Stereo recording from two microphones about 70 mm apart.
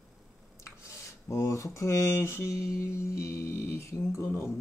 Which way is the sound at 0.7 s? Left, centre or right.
Left.